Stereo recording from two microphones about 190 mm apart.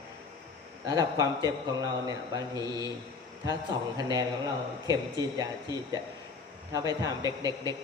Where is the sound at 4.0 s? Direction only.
20° right (ahead or behind).